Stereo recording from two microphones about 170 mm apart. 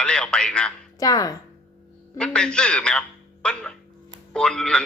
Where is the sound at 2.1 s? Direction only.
5° left (ahead or behind).